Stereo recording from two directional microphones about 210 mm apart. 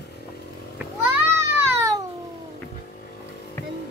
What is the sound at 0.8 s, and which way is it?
Children playing, 10° right (ahead or behind).